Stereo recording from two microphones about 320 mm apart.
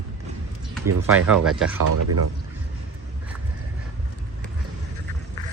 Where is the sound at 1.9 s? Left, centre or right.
Right.